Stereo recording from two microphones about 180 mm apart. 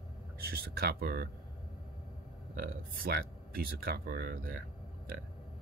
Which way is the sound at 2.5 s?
55° right (ahead or behind).